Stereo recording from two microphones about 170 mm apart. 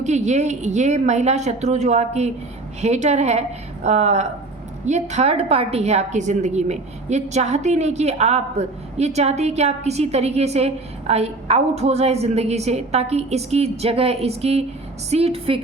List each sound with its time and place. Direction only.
0.0 s a woman's voice: 45° right (ahead or behind)